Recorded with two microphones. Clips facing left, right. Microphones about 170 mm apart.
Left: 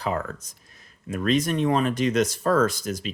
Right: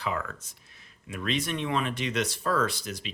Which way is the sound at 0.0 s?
40° left (ahead or behind).